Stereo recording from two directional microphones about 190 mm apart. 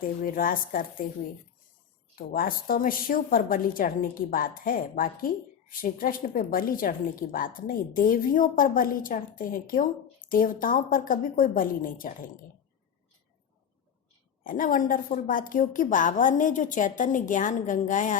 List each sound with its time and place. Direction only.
0.0 s a woman's voice: 45° left (ahead or behind)
2.1 s a woman's voice: 50° left (ahead or behind)
14.4 s a woman's voice: 45° left (ahead or behind)